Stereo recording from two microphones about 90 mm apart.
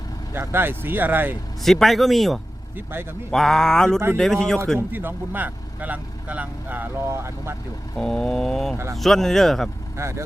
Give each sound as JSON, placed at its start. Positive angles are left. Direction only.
{"t": 0.3, "sound": "speech", "side_deg": -25}
{"t": 1.6, "sound": "speech", "side_deg": 0}
{"t": 2.7, "sound": "speech", "side_deg": -25}
{"t": 3.3, "sound": "speech", "side_deg": 5}
{"t": 4.9, "sound": "speech", "side_deg": -20}
{"t": 7.9, "sound": "speech", "side_deg": 5}
{"t": 10.0, "sound": "speech", "side_deg": -30}